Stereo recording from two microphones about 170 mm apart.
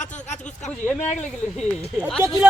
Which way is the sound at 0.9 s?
45° left (ahead or behind).